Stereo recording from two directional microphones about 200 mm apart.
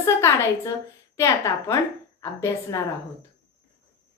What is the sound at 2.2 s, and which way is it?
Speech, 15° left (ahead or behind).